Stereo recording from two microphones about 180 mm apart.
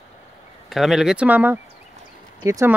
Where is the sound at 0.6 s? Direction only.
Centre (ahead or behind).